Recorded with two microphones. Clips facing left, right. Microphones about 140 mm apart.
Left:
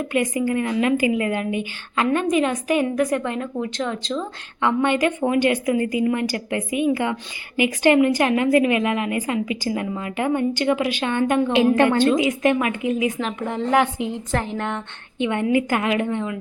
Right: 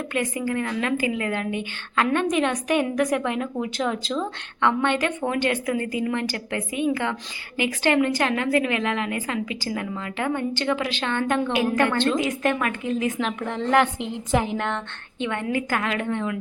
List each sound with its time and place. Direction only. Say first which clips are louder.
0.1 s a woman's voice: left 4 dB; 15° left (ahead or behind); by 4.1 s 5° right (ahead or behind)
4.2 s a woman's voice: even; 10° left (ahead or behind)
11.5 s a woman's voice: left 7 dB; 25° left (ahead or behind)
11.9 s a woman's voice: left 4 dB; 10° left (ahead or behind)
14.3 s a woman's voice: right 3 dB; 10° right (ahead or behind)
15.2 s a woman's voice: left 6 dB; 15° left (ahead or behind)